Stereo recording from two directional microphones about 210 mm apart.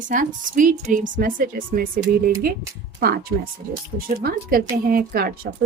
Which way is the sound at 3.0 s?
45° right (ahead or behind).